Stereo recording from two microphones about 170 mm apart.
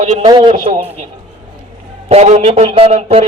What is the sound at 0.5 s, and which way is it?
Speech, 40° right (ahead or behind).